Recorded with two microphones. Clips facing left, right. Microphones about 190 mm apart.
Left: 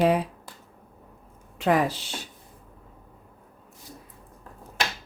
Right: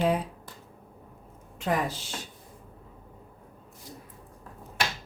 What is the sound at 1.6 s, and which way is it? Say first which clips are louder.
Speech: left 6 dB; 70° left (ahead or behind).